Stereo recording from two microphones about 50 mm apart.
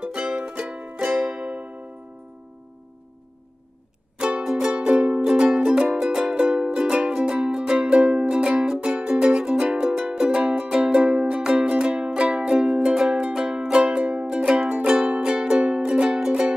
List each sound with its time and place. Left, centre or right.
0.0 s music: right
4.2 s music: centre